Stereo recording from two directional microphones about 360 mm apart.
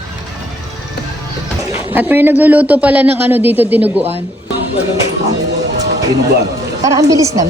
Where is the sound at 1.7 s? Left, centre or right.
Centre.